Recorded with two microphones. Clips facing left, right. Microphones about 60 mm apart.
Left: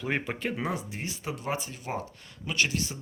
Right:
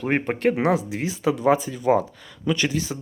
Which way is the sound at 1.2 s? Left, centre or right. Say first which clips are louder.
Right 15 dB; right.